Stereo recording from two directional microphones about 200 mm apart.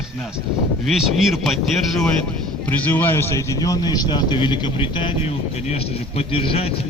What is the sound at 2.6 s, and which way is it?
A man's voice, 10° left (ahead or behind).